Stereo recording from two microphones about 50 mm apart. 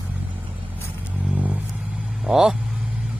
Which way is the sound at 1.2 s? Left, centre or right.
Right.